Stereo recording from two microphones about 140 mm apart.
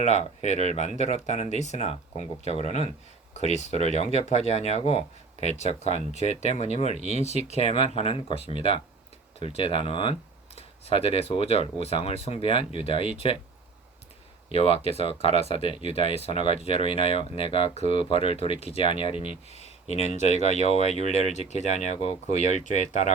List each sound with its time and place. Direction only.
0.0 s speech: 55° left (ahead or behind)
14.5 s speech: 45° left (ahead or behind)
15.7 s speech: 50° right (ahead or behind)
16.2 s speech: 45° left (ahead or behind); by 23.1 s 60° left (ahead or behind)